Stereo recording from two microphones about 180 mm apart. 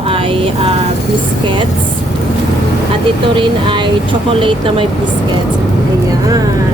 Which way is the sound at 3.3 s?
25° right (ahead or behind).